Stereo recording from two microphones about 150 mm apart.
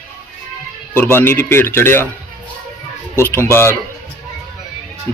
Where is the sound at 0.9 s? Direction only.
15° left (ahead or behind).